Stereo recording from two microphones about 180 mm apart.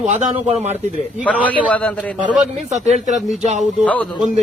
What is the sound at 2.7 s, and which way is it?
Speech, 40° right (ahead or behind).